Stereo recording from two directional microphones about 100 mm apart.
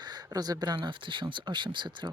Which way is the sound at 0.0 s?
45° right (ahead or behind).